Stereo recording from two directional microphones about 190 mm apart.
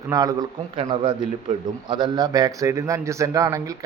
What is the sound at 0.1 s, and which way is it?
A man's voice, 20° right (ahead or behind).